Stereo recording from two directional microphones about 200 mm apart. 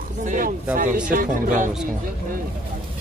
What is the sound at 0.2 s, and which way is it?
Speech, 40° right (ahead or behind).